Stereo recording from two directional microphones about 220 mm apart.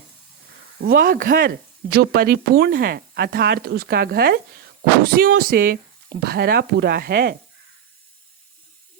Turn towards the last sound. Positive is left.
turn(degrees=-45)  # may be behind; listen again after turning